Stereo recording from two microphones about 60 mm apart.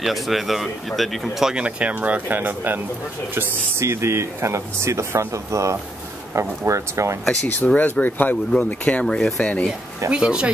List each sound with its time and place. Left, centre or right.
0.0 s speech: centre
1.5 s speech: centre
3.3 s speech: right
7.4 s speech: left
10.1 s speech: centre